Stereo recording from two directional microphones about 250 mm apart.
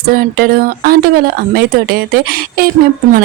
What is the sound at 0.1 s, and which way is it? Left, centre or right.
A woman's voice, right.